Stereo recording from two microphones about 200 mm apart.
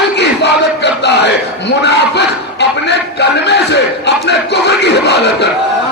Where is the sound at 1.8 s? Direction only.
60° left (ahead or behind).